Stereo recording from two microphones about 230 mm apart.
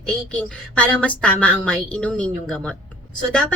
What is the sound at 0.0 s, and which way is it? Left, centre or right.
A woman's voice, centre.